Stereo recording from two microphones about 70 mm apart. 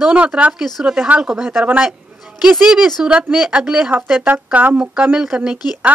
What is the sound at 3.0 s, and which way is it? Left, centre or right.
Speech, centre.